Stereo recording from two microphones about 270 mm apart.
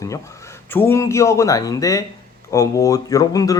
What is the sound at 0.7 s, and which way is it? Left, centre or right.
Speech, centre.